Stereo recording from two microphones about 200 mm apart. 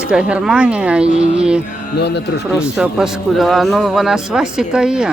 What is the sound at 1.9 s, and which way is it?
Speech, 55° left (ahead or behind).